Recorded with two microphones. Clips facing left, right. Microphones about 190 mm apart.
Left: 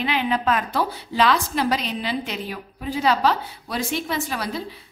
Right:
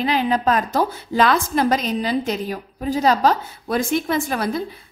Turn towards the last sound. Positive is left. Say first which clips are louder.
# right 5 dB
turn(degrees=-50)  # may be behind; listen again after turning